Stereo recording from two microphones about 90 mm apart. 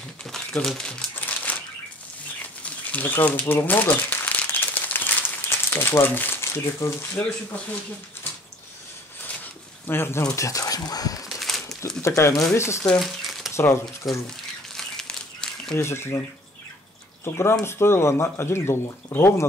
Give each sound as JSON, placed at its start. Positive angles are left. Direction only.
{"t": 0.2, "sound": "crumpling", "side_deg": 5}
{"t": 1.1, "sound": "crumpling", "side_deg": 20}
{"t": 2.6, "sound": "crumpling", "side_deg": 15}
{"t": 5.7, "sound": "speech", "side_deg": 25}
{"t": 9.8, "sound": "speech", "side_deg": 25}
{"t": 10.3, "sound": "speech", "side_deg": 35}
{"t": 11.2, "sound": "a sound", "side_deg": 0}
{"t": 12.0, "sound": "speech", "side_deg": 30}
{"t": 13.0, "sound": "a sound", "side_deg": 0}
{"t": 13.5, "sound": "a sound", "side_deg": 30}
{"t": 14.0, "sound": "speech", "side_deg": 0}
{"t": 14.7, "sound": "crumpling", "side_deg": 5}
{"t": 15.8, "sound": "speech", "side_deg": 30}